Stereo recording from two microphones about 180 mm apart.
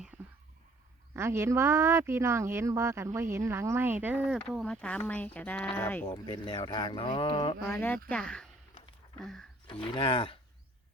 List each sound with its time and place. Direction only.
0.1 s whispering: 10° right (ahead or behind)
1.1 s speech: 15° right (ahead or behind)
4.6 s speech: 5° left (ahead or behind)
6.1 s speech: 30° left (ahead or behind)
7.6 s speech: 10° left (ahead or behind)
9.8 s speech: 30° left (ahead or behind)